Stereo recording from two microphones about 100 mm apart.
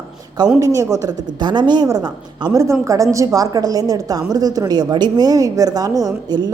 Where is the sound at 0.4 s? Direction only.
45° right (ahead or behind).